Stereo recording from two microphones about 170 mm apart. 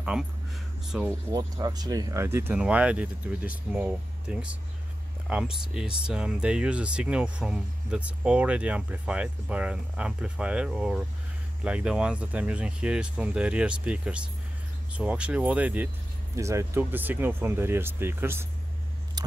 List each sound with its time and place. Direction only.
0.1 s speech: 5° right (ahead or behind)
1.3 s speech: 25° right (ahead or behind)
19.2 s vehicle: 25° right (ahead or behind)